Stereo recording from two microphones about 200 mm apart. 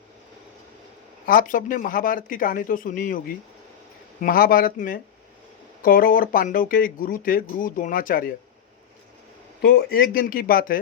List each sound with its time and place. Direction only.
1.3 s speech: 45° left (ahead or behind)
9.6 s speech: 50° left (ahead or behind)